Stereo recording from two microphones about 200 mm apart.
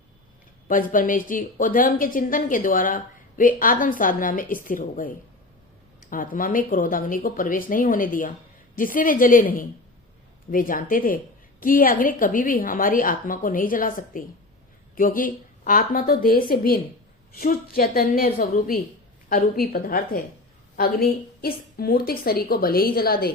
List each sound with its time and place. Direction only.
0.7 s a woman's voice: 45° left (ahead or behind)